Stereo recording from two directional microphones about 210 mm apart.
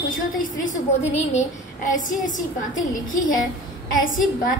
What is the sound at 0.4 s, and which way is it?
A woman's voice, 40° left (ahead or behind).